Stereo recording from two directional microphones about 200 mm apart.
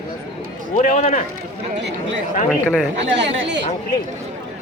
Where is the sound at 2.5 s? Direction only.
5° right (ahead or behind).